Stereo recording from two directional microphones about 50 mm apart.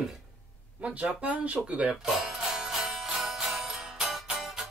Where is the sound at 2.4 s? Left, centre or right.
Centre.